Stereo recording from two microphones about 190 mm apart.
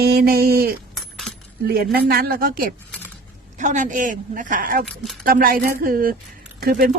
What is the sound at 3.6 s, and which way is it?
Speech, 40° right (ahead or behind).